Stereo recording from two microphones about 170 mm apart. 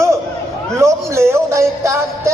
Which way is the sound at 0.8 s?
15° right (ahead or behind).